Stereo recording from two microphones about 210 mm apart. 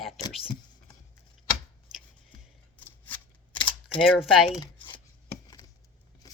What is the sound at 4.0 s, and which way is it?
Speech, centre (ahead or behind).